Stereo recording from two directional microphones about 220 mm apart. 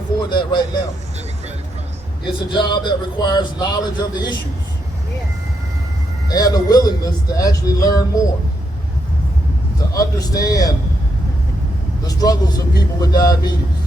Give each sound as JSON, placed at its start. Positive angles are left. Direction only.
{"t": 0.3, "sound": "a man's voice", "side_deg": 20}
{"t": 2.2, "sound": "a man's voice", "side_deg": 20}
{"t": 6.2, "sound": "a man's voice", "side_deg": 15}
{"t": 9.9, "sound": "a man's voice", "side_deg": 15}
{"t": 12.0, "sound": "a man's voice", "side_deg": 15}